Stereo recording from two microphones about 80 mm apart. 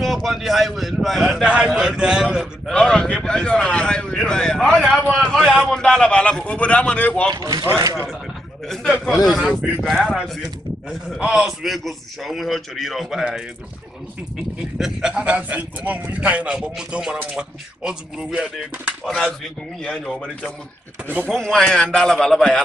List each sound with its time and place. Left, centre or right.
0.0 s a sound: centre
1.4 s speech: centre
2.6 s speech: centre
5.2 s a sound: centre
5.6 s a man's voice: centre
7.2 s speech: right
7.8 s speech: right
9.0 s a man's voice: centre
9.4 s speech: centre
9.8 s a man's voice: centre
14.8 s speech: centre
19.0 s a man's voice: centre